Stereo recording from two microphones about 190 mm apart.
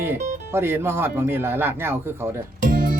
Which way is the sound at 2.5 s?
45° right (ahead or behind).